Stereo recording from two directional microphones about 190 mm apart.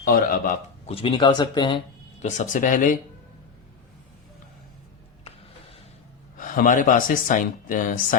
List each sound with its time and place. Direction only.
0.0 s speech: 50° left (ahead or behind)
0.9 s speech: 30° left (ahead or behind)
2.2 s speech: 40° left (ahead or behind)
6.3 s speech: 45° left (ahead or behind)